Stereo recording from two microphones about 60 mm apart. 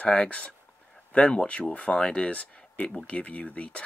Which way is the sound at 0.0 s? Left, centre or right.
Left.